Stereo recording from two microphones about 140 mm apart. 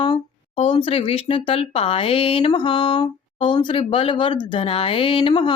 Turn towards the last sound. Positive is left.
turn(degrees=35)  # may be behind; listen again after turning